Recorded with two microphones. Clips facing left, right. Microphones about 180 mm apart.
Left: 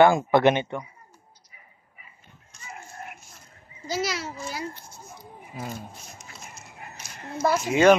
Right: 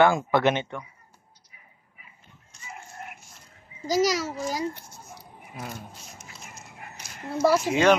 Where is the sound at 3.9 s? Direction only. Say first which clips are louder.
Right 6 dB; 40° right (ahead or behind).